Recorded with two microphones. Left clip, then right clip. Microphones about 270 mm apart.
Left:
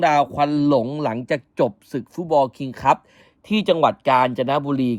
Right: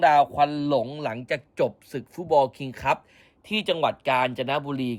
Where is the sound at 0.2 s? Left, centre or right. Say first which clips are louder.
Left 2 dB; left.